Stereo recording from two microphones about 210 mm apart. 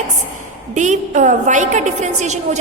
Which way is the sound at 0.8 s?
35° right (ahead or behind).